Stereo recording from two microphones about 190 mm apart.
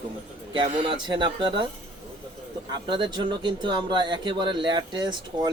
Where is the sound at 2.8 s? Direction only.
25° right (ahead or behind).